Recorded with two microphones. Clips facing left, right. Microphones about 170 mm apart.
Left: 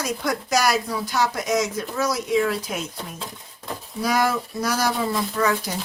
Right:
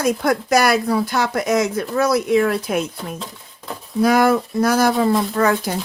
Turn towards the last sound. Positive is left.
turn(degrees=-55)  # may be behind; listen again after turning